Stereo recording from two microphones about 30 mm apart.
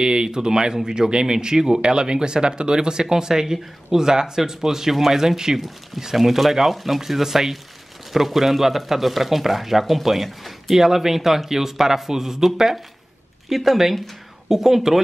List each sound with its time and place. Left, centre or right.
0.0 s speech: right
13.5 s speech: centre